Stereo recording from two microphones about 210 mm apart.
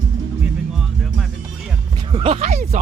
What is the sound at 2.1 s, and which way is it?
Speech, 25° right (ahead or behind).